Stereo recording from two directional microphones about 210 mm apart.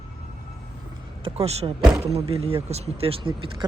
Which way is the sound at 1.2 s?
25° right (ahead or behind).